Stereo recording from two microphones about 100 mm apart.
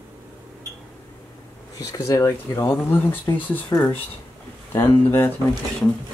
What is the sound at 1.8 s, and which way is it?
Speech, 35° left (ahead or behind).